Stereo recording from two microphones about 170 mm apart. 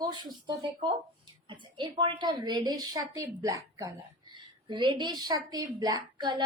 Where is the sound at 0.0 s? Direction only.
25° right (ahead or behind).